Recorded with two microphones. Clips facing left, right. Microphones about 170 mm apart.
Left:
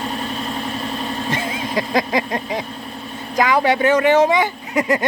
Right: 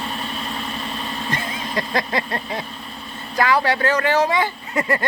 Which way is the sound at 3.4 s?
20° left (ahead or behind).